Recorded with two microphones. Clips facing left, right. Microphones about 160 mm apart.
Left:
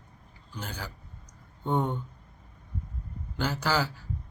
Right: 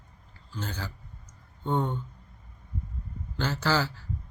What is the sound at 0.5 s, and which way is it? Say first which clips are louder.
Speech: right 2 dB; 10° left (ahead or behind).